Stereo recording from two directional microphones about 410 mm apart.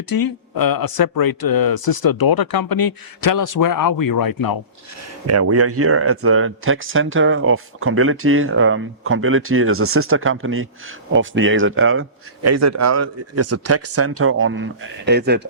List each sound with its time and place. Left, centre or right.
0.1 s speech: left
5.2 s speech: right